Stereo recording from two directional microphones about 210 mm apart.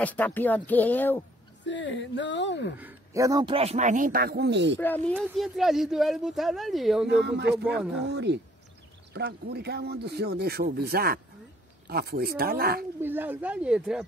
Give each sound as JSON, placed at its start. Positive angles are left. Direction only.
{"t": 0.0, "sound": "speech", "side_deg": 10}
{"t": 1.7, "sound": "speech", "side_deg": 60}
{"t": 2.8, "sound": "a man's voice", "side_deg": -10}
{"t": 4.7, "sound": "speech", "side_deg": 10}
{"t": 7.1, "sound": "speech", "side_deg": -55}
{"t": 7.8, "sound": "speech", "side_deg": -5}
{"t": 8.1, "sound": "speech", "side_deg": -55}
{"t": 13.0, "sound": "speech", "side_deg": -10}